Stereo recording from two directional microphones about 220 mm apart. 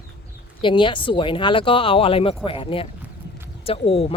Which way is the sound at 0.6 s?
20° left (ahead or behind).